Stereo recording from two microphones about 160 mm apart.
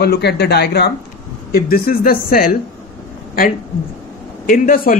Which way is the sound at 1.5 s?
65° left (ahead or behind).